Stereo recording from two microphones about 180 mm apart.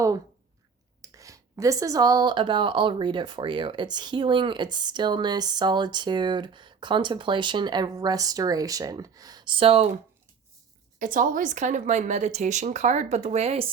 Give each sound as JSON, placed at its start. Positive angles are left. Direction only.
{"t": 1.0, "sound": "speech", "side_deg": -20}
{"t": 11.0, "sound": "speech", "side_deg": -50}